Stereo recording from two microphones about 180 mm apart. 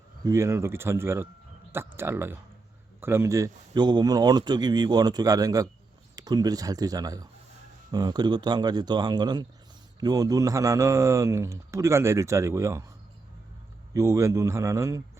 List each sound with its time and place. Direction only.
0.3 s a man's voice: 15° right (ahead or behind)
13.9 s a man's voice: 15° right (ahead or behind)